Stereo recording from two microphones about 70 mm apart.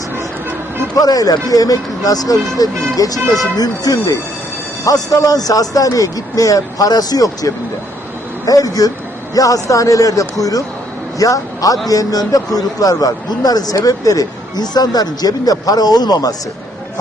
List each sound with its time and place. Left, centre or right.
0.9 s speech: left